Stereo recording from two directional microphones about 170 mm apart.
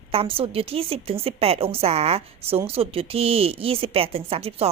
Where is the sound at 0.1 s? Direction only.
35° right (ahead or behind).